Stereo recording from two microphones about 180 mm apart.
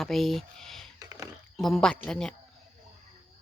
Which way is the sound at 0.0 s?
Centre (ahead or behind).